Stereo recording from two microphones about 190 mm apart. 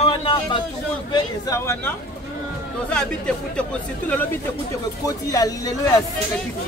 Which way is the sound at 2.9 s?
5° left (ahead or behind).